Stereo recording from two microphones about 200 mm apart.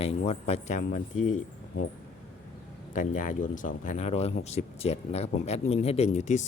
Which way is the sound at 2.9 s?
40° left (ahead or behind).